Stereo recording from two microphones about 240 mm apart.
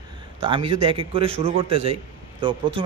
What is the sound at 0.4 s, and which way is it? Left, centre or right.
A man's voice, right.